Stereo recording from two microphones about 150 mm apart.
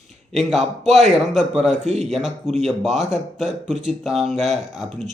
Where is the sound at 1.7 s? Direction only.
45° right (ahead or behind).